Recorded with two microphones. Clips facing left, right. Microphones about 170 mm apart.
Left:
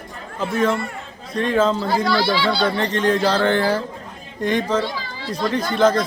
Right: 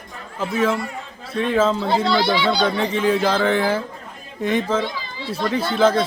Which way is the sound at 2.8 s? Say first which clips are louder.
Left 1 dB; 5° right (ahead or behind).